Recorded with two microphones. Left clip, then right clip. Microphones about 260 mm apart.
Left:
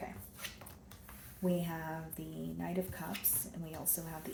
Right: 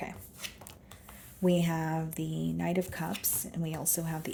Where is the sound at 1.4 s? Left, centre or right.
Right.